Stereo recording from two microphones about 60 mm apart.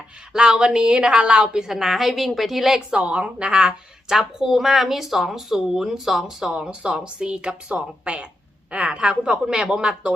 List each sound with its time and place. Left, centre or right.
0.3 s a woman's voice: centre
2.9 s a woman's voice: right